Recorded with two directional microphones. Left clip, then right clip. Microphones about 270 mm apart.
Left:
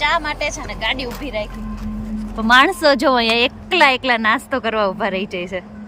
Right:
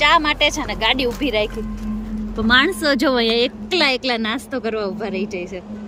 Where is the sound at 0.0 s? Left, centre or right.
Centre.